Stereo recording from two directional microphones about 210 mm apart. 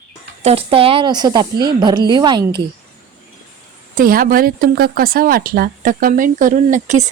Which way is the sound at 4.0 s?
45° right (ahead or behind).